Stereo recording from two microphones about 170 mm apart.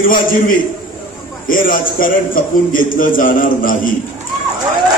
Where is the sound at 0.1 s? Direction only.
55° left (ahead or behind).